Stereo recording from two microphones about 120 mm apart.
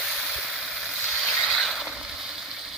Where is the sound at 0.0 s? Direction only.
5° left (ahead or behind).